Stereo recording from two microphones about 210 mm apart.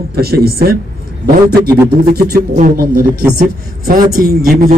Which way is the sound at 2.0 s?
45° right (ahead or behind).